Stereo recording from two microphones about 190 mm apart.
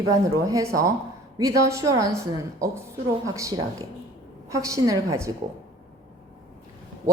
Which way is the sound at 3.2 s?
15° right (ahead or behind).